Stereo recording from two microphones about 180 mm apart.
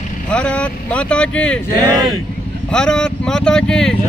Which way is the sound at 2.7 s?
5° left (ahead or behind).